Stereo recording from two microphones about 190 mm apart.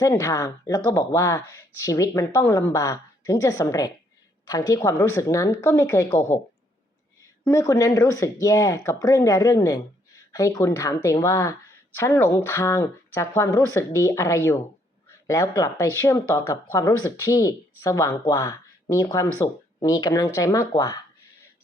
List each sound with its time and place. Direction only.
0.0 s speech: 15° left (ahead or behind)